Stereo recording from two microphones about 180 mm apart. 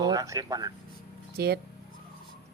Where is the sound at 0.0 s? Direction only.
20° right (ahead or behind).